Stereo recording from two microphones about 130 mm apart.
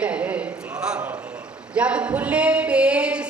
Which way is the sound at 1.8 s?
10° right (ahead or behind).